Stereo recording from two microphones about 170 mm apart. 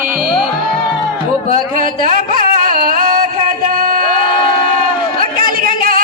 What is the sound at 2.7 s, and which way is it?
Music, 55° right (ahead or behind).